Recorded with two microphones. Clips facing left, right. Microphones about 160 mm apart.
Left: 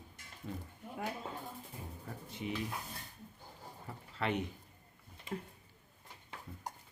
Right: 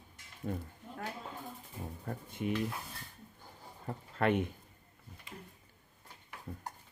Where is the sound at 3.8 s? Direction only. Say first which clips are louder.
Right 6 dB; 50° right (ahead or behind).